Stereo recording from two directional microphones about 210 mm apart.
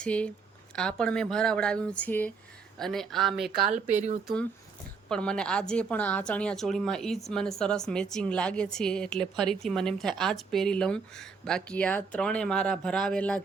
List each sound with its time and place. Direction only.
0.0 s a woman's voice: 5° left (ahead or behind)
3.6 s speech: 35° right (ahead or behind)
5.0 s a woman's voice: 5° left (ahead or behind)